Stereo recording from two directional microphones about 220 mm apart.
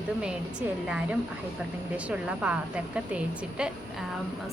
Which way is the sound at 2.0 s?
5° right (ahead or behind).